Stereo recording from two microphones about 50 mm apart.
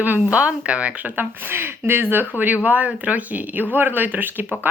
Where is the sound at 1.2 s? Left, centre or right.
Right.